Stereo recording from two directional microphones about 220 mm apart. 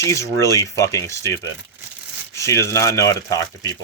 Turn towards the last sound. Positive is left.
turn(degrees=15)  # may be behind; listen again after turning